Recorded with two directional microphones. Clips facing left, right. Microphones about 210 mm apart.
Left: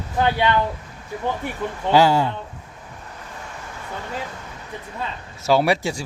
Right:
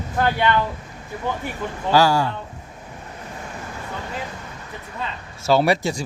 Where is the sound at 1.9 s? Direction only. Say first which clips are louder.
Left 1 dB; 20° left (ahead or behind).